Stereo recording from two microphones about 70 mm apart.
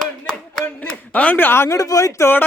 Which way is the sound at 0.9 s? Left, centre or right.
Centre.